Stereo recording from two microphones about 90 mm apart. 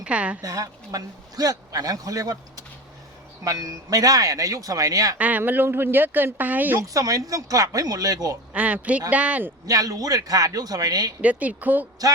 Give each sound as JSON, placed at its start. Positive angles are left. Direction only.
{"t": 0.0, "sound": "a woman's voice", "side_deg": -15}
{"t": 0.4, "sound": "speech", "side_deg": -40}
{"t": 5.1, "sound": "speech", "side_deg": -15}
{"t": 6.8, "sound": "speech", "side_deg": -40}
{"t": 8.5, "sound": "a man's voice", "side_deg": -15}
{"t": 9.6, "sound": "a man's voice", "side_deg": -45}
{"t": 11.2, "sound": "a man's voice", "side_deg": -15}